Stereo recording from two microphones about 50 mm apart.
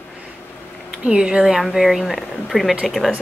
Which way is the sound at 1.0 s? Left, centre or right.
Centre.